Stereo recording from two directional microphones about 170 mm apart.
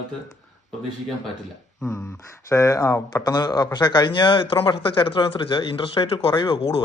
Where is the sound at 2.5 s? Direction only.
20° left (ahead or behind).